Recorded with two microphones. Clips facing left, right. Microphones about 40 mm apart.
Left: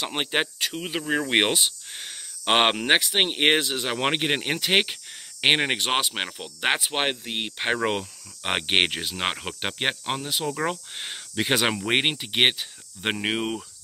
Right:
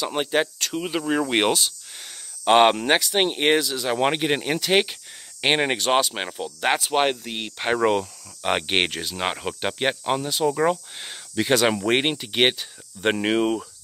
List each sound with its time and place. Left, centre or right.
0.0 s speech: left
0.7 s speech: centre